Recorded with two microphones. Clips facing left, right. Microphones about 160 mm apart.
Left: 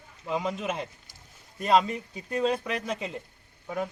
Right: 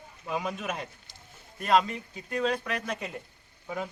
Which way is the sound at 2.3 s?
35° left (ahead or behind).